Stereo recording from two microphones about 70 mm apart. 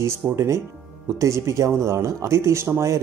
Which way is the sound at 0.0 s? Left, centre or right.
Right.